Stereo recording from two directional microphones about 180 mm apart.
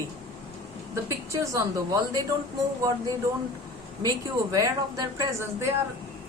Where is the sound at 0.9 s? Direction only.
15° right (ahead or behind).